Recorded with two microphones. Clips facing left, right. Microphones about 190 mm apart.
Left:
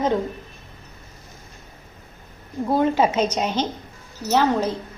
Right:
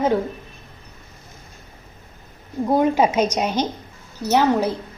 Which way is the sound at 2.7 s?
15° right (ahead or behind).